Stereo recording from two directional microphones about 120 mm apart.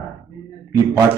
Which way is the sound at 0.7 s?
20° right (ahead or behind).